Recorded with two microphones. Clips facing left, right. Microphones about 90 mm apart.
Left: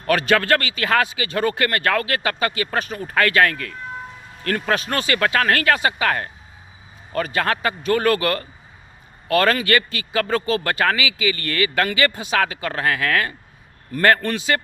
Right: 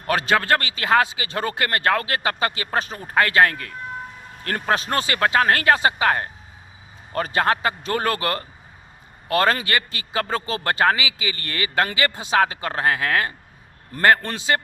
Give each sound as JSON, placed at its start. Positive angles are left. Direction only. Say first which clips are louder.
{"t": 0.1, "sound": "a man's voice", "louder": "left 2 dB", "side_deg": -25}